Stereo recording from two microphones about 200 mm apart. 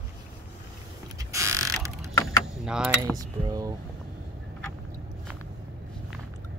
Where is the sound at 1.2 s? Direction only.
15° right (ahead or behind).